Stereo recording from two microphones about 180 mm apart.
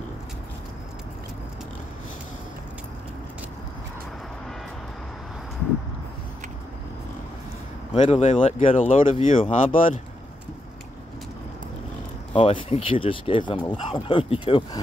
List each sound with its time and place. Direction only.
7.9 s speech: 35° left (ahead or behind)
12.3 s speech: 30° left (ahead or behind)